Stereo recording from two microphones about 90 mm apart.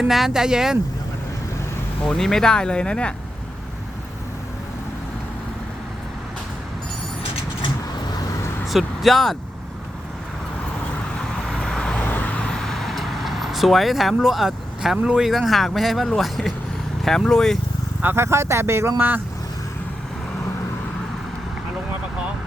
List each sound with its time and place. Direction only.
0.1 s speech: 5° right (ahead or behind)
2.0 s speech: 5° left (ahead or behind)
8.6 s speech: centre (ahead or behind)
11.2 s vehicle: 5° left (ahead or behind)
17.0 s speech: 5° left (ahead or behind)
18.0 s speech: 25° right (ahead or behind)